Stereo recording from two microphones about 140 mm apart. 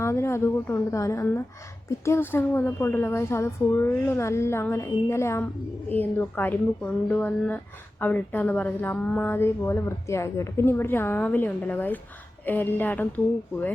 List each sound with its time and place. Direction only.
0.0 s a woman's voice: 20° left (ahead or behind)